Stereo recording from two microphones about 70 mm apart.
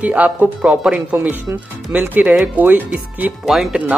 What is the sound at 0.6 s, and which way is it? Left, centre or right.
Speech, centre.